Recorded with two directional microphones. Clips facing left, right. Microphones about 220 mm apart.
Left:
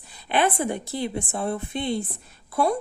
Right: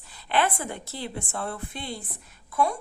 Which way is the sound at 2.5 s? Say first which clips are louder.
Left 3 dB; 35° left (ahead or behind).